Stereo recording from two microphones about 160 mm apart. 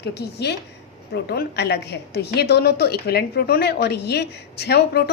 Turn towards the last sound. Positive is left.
turn(degrees=85)